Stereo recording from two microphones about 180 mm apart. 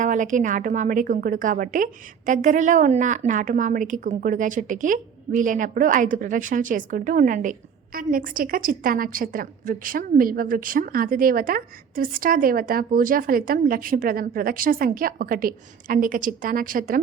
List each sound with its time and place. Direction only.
0.0 s a woman's voice: 45° right (ahead or behind)